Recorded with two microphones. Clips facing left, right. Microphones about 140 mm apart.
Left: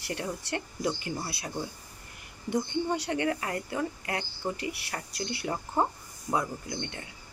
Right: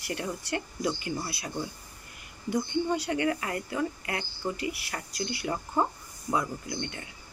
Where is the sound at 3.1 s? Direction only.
30° left (ahead or behind).